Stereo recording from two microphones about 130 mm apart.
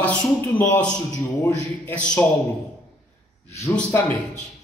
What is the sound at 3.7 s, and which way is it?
Speech, 10° left (ahead or behind).